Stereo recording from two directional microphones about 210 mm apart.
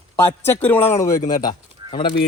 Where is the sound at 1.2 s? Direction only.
40° left (ahead or behind).